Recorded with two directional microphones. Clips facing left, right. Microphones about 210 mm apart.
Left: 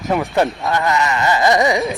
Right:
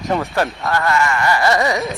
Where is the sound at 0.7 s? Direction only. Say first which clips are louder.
Even; 20° left (ahead or behind).